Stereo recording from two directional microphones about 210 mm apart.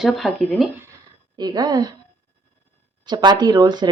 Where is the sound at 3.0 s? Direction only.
20° right (ahead or behind).